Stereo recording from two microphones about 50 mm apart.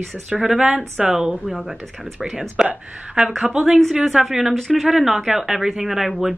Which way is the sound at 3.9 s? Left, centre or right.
Centre.